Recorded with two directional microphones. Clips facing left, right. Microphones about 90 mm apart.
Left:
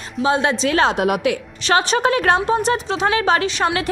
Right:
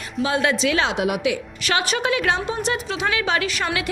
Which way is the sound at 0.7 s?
40° left (ahead or behind).